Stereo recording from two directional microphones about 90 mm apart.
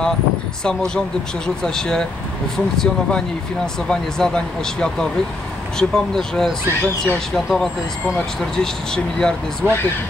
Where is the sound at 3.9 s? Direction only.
5° left (ahead or behind).